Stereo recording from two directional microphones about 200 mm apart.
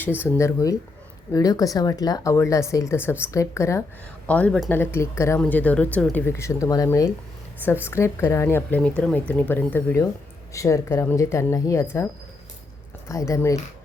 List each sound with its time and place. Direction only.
0.3 s speech: 15° left (ahead or behind)
13.1 s speech: 15° left (ahead or behind)